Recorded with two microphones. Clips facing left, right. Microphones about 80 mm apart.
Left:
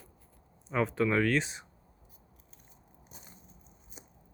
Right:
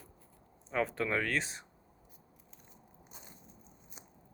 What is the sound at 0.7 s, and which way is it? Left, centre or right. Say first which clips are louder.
Speech: left 4 dB; centre.